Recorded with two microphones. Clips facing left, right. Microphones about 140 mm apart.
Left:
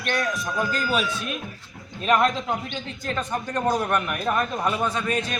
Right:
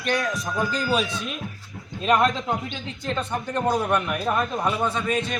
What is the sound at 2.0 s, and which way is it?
Speech, 20° right (ahead or behind).